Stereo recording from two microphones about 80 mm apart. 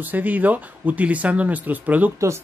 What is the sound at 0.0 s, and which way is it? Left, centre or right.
Speech, right.